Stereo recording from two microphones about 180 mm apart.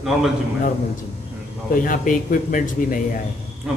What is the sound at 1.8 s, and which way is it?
Speech, 50° left (ahead or behind).